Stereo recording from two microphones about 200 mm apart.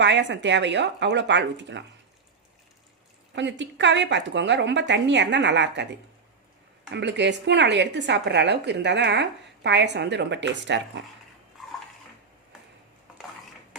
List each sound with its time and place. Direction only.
0.0 s a woman's voice: 60° right (ahead or behind)
3.3 s a woman's voice: 60° right (ahead or behind)
6.9 s a woman's voice: 60° right (ahead or behind)